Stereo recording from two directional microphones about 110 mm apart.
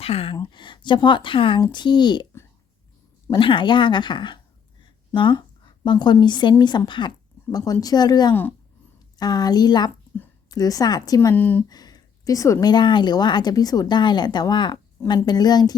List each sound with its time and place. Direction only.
0.0 s speech: 60° left (ahead or behind)
0.3 s a woman's voice: 45° left (ahead or behind)
3.3 s a woman's voice: 50° left (ahead or behind)
7.5 s speech: 35° left (ahead or behind)
8.3 s speech: 20° left (ahead or behind)
9.1 s speech: 40° left (ahead or behind)
11.3 s speech: 15° left (ahead or behind)
11.7 s speech: 35° left (ahead or behind)